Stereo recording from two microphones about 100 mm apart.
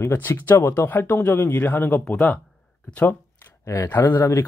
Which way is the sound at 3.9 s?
20° left (ahead or behind).